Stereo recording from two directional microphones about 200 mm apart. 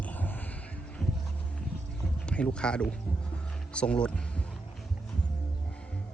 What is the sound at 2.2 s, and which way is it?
Speech, 5° left (ahead or behind).